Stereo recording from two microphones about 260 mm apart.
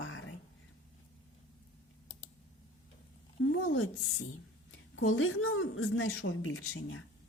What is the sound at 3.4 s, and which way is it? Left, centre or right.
A woman's voice, left.